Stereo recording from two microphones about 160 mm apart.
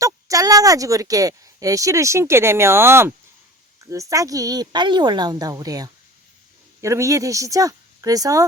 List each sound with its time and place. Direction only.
0.0 s speech: 20° right (ahead or behind)